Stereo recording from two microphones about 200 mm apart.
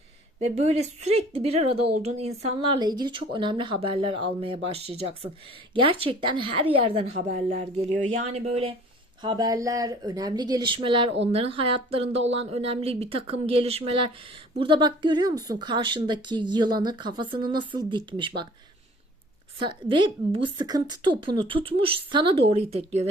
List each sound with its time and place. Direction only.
0.3 s a woman's voice: 35° right (ahead or behind)
9.2 s a woman's voice: 20° right (ahead or behind)
19.5 s a woman's voice: 25° right (ahead or behind)